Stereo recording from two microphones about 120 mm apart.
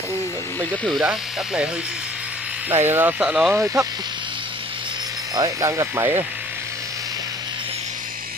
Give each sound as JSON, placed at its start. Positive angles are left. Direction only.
{"t": 0.8, "sound": "speech", "side_deg": -5}
{"t": 2.7, "sound": "speech", "side_deg": -20}
{"t": 5.3, "sound": "speech", "side_deg": -30}